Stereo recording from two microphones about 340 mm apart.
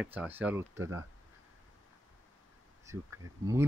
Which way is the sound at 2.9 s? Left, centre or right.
Centre.